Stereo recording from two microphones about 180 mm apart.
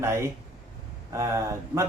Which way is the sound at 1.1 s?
15° right (ahead or behind).